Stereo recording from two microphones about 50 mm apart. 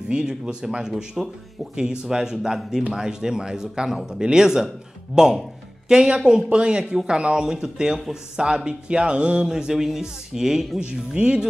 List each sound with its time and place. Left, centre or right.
0.1 s speech: centre
10.8 s speech: centre